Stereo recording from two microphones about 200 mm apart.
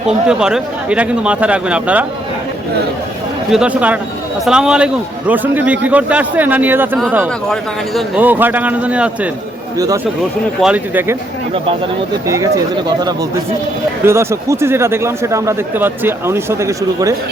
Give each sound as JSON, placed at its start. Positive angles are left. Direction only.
{"t": 0.3, "sound": "a man's voice", "side_deg": -5}
{"t": 3.5, "sound": "a man's voice", "side_deg": -5}
{"t": 7.4, "sound": "a man's voice", "side_deg": 0}
{"t": 9.7, "sound": "a man's voice", "side_deg": -15}
{"t": 12.3, "sound": "a man's voice", "side_deg": -15}